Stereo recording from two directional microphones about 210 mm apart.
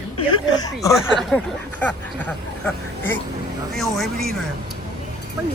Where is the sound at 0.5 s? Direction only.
15° left (ahead or behind).